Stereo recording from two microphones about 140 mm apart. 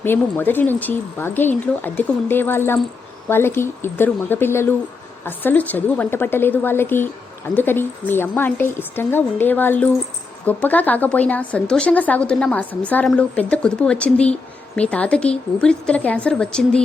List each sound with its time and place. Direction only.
0.0 s speech: 15° left (ahead or behind)